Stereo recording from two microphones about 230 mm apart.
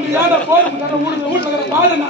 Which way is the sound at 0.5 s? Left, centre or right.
Centre.